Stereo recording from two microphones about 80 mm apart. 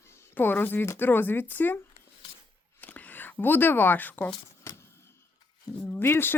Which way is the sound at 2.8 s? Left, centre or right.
Left.